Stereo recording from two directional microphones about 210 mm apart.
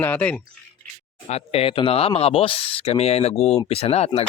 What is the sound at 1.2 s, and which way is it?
Speech, 30° left (ahead or behind).